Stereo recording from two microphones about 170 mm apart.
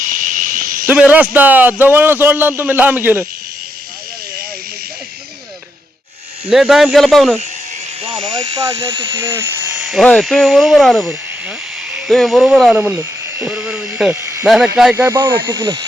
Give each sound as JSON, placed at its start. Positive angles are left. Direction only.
{"t": 0.0, "sound": "a sound", "side_deg": -50}
{"t": 0.9, "sound": "a man's voice", "side_deg": -10}
{"t": 6.5, "sound": "speech", "side_deg": 0}
{"t": 8.0, "sound": "speech", "side_deg": -30}
{"t": 9.9, "sound": "speech", "side_deg": 0}
{"t": 14.9, "sound": "a man's voice", "side_deg": -15}